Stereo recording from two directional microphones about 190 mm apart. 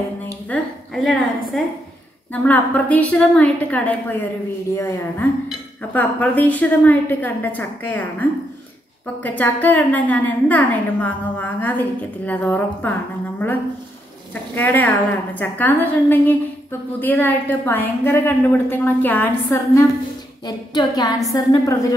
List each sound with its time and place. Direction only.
0.2 s a woman's voice: 5° left (ahead or behind)
14.3 s a woman's voice: 10° left (ahead or behind)